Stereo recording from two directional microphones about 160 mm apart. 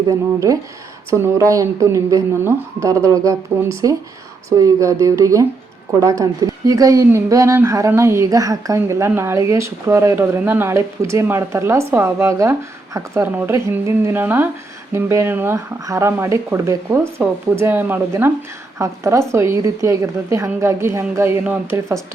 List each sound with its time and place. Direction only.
0.1 s a woman's voice: 20° right (ahead or behind)